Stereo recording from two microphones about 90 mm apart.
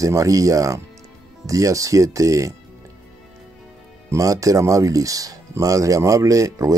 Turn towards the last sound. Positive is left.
turn(degrees=-35)  # may be behind; listen again after turning